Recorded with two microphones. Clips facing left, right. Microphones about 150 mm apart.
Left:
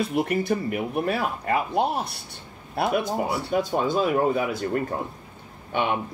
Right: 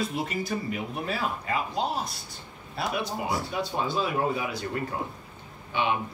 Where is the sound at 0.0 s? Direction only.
60° left (ahead or behind).